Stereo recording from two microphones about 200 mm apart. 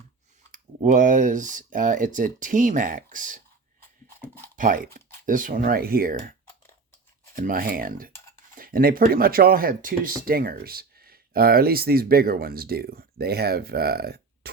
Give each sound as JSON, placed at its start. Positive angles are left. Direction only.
{"t": 0.5, "sound": "speech", "side_deg": -40}
{"t": 4.5, "sound": "speech", "side_deg": -45}
{"t": 7.3, "sound": "speech", "side_deg": -45}